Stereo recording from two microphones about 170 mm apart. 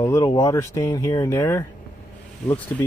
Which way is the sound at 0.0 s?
20° left (ahead or behind).